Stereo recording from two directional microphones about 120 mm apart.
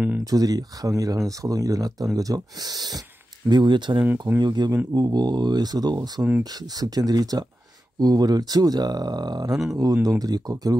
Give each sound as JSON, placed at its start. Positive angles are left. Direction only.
{"t": 0.2, "sound": "speech", "side_deg": -30}